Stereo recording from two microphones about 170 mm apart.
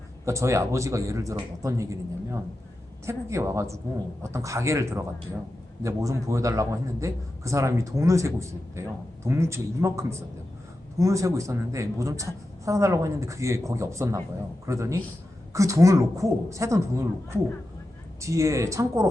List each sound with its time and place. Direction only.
0.3 s a man's voice: 15° right (ahead or behind)